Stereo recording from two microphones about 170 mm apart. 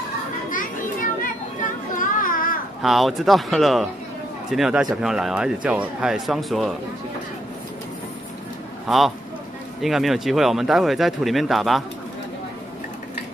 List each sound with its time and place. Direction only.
2.0 s children playing: 55° left (ahead or behind)
2.8 s speech: centre (ahead or behind)
8.8 s speech: centre (ahead or behind)